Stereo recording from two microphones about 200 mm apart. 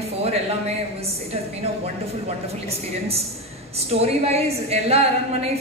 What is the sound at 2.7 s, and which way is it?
A woman's voice, 30° right (ahead or behind).